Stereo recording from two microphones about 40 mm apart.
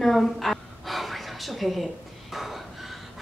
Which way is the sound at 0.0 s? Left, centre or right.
Centre.